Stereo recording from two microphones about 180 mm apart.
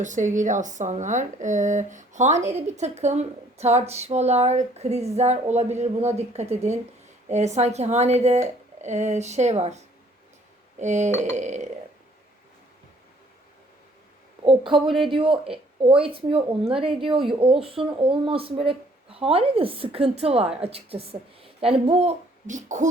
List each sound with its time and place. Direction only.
0.0 s a woman's voice: 45° right (ahead or behind)
14.4 s a sound: 30° right (ahead or behind)
14.8 s speech: centre (ahead or behind)
15.1 s a woman's voice: 30° right (ahead or behind)